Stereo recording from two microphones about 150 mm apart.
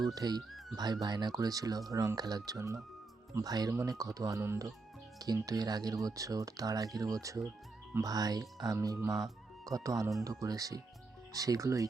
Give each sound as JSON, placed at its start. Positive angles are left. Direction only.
{"t": 0.0, "sound": "speech", "side_deg": -25}